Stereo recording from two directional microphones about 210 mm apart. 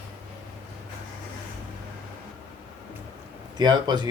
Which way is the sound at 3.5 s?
20° right (ahead or behind).